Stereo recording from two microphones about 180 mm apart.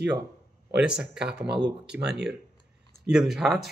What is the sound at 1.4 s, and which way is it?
Speech, 65° right (ahead or behind).